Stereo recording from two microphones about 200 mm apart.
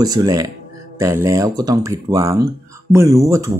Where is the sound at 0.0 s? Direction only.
20° right (ahead or behind).